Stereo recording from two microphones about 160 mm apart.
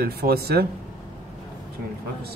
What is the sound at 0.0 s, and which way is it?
Speech, 75° right (ahead or behind).